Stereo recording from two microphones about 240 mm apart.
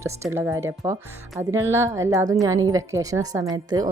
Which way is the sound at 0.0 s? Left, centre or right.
Centre.